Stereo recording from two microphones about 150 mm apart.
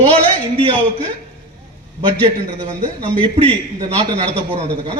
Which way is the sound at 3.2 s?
40° right (ahead or behind).